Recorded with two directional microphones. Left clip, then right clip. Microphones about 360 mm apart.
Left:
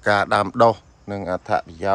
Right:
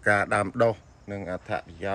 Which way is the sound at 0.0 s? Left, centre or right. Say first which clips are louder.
Left 5 dB; centre.